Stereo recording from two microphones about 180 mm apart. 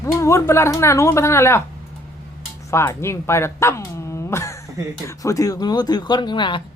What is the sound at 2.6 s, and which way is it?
Speech, 15° left (ahead or behind).